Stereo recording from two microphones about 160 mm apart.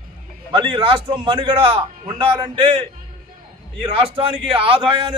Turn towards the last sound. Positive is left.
turn(degrees=-30)  # may be behind; listen again after turning